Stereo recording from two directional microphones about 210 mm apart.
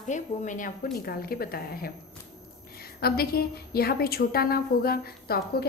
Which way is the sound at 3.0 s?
45° left (ahead or behind).